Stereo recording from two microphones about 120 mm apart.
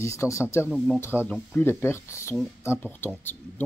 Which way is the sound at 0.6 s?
Centre (ahead or behind).